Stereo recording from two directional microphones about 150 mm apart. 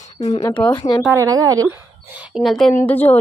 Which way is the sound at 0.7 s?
30° left (ahead or behind).